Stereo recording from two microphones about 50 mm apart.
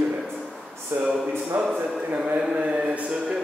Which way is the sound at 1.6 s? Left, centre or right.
Centre.